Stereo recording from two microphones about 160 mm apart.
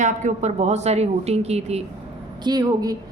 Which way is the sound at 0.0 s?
50° right (ahead or behind).